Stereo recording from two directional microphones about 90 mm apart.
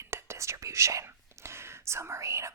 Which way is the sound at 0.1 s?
30° right (ahead or behind).